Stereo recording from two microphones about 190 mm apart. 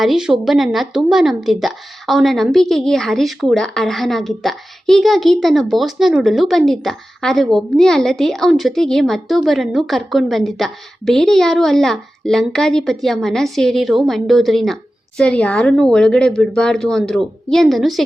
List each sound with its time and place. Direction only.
0.0 s a woman's voice: centre (ahead or behind)